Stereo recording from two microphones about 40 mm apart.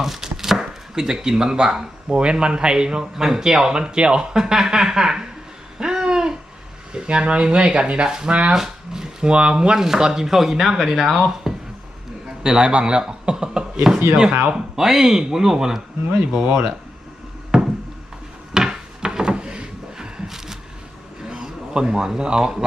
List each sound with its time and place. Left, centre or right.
0.0 s chopping: centre
0.6 s speech: centre
5.8 s babbling: centre
6.9 s speech: right
8.5 s a sound: centre
9.3 s speech: right
9.7 s speech: centre; by 16.7 s right
17.5 s a sound: centre
20.2 s a sound: centre
21.4 s a man's voice: right